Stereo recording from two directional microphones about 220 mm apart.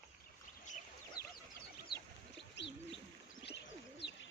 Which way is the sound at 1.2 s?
45° left (ahead or behind).